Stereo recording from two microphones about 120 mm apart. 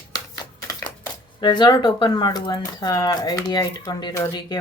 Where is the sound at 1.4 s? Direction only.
35° left (ahead or behind).